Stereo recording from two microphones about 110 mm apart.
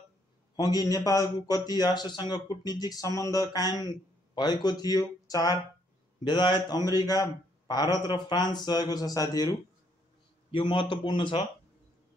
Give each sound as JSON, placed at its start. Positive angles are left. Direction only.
{"t": 0.6, "sound": "a man's voice", "side_deg": 35}
{"t": 10.5, "sound": "a man's voice", "side_deg": 50}